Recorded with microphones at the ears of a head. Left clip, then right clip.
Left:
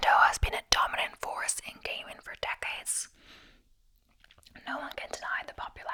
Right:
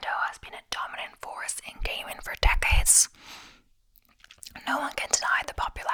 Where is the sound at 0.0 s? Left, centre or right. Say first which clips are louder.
Left 7 dB; left.